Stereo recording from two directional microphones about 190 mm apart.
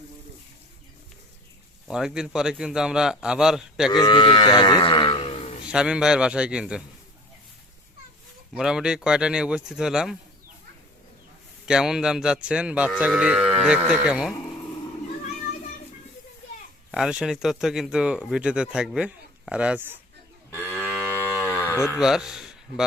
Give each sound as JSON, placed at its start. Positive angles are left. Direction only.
{"t": 1.9, "sound": "a man's voice", "side_deg": -5}
{"t": 3.8, "sound": "speech", "side_deg": 20}
{"t": 5.6, "sound": "a man's voice", "side_deg": -5}
{"t": 8.5, "sound": "a man's voice", "side_deg": -5}
{"t": 11.6, "sound": "a man's voice", "side_deg": -5}
{"t": 16.9, "sound": "a man's voice", "side_deg": -5}
{"t": 20.5, "sound": "moo", "side_deg": 10}
{"t": 21.4, "sound": "cattle", "side_deg": 15}
{"t": 21.9, "sound": "speech", "side_deg": -5}